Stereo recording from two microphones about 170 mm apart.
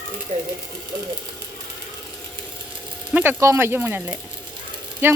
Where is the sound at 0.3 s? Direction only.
35° right (ahead or behind).